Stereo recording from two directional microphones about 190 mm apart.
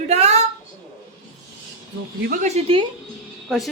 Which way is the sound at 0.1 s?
35° right (ahead or behind).